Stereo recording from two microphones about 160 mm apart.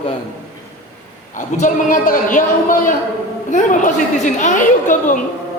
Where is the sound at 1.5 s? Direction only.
55° left (ahead or behind).